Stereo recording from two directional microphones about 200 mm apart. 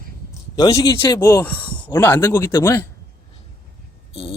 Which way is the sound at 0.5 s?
20° left (ahead or behind).